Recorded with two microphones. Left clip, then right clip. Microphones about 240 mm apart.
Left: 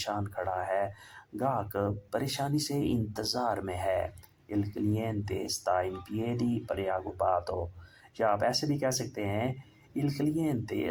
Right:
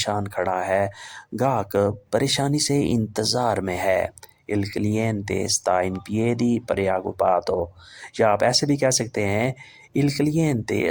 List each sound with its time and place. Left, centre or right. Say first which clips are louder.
0.0 s speech: right 9 dB; right